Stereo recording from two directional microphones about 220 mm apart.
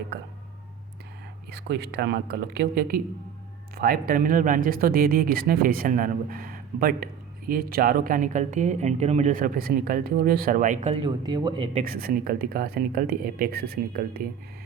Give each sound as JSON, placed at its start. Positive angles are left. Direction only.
{"t": 1.5, "sound": "speech", "side_deg": -50}
{"t": 11.0, "sound": "speech", "side_deg": -20}
{"t": 11.8, "sound": "speech", "side_deg": -40}